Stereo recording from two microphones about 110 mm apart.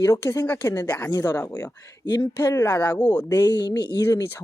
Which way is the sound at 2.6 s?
20° left (ahead or behind).